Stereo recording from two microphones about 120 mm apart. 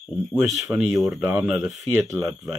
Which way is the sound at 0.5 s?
Centre (ahead or behind).